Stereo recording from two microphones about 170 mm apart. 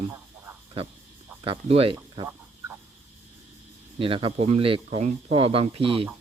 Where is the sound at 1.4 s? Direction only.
35° right (ahead or behind).